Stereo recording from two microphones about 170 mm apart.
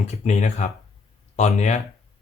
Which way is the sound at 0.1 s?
45° left (ahead or behind).